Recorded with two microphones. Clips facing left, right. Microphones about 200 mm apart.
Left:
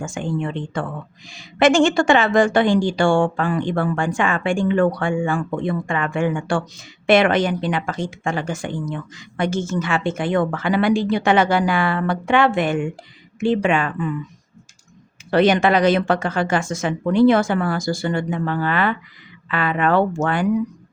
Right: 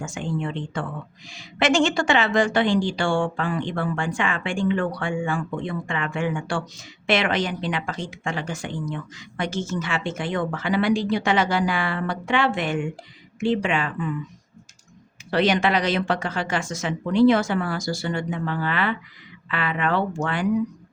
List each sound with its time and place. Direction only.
0.0 s a woman's voice: 50° left (ahead or behind)
15.3 s a woman's voice: 50° left (ahead or behind)